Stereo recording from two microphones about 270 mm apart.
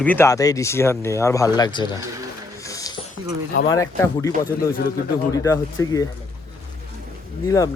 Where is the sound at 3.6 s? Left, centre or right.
Centre.